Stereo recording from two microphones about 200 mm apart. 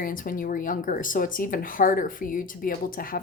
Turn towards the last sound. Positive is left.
turn(degrees=45)  # may be behind; listen again after turning